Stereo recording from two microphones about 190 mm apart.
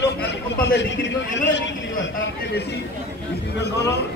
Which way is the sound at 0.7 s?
70° left (ahead or behind).